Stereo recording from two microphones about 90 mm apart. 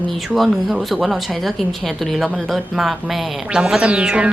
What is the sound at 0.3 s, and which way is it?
A woman's voice, centre (ahead or behind).